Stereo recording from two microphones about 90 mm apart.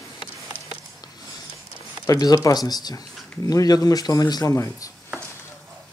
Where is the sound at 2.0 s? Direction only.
45° left (ahead or behind).